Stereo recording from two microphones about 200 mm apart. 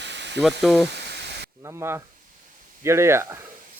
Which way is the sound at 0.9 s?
55° right (ahead or behind).